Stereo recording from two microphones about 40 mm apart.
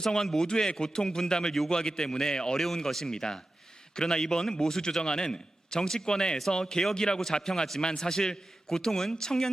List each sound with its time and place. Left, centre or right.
0.0 s a man's voice: centre